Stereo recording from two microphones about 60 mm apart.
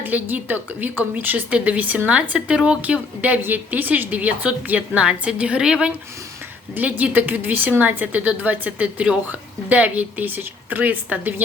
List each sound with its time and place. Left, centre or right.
0.0 s a woman's voice: right; by 5.9 s centre
6.7 s a woman's voice: right